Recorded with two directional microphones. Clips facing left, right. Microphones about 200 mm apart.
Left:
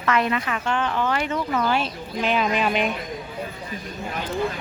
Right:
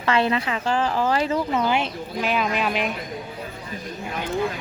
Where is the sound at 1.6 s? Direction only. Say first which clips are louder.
Right 1 dB; 20° right (ahead or behind).